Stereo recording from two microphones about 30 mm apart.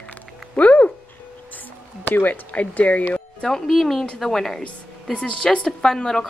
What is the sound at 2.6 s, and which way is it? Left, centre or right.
Speech, left.